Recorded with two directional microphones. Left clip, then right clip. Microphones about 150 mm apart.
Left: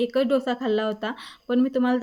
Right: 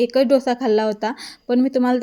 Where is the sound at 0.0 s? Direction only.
35° right (ahead or behind).